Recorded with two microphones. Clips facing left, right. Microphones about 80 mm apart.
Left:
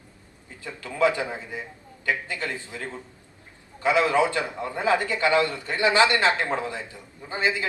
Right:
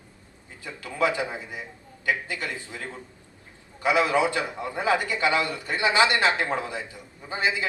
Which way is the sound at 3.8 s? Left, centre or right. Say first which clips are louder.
Left 1 dB; centre.